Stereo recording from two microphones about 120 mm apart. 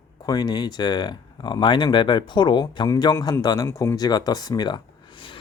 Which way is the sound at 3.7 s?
20° left (ahead or behind).